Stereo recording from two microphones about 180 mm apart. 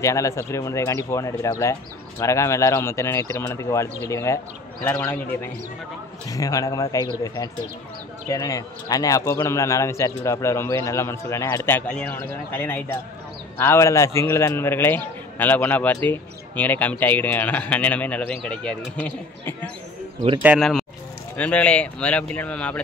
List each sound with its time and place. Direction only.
0.0 s a man's voice: 15° left (ahead or behind)
8.3 s a man's voice: 20° left (ahead or behind)
20.4 s a man's voice: centre (ahead or behind)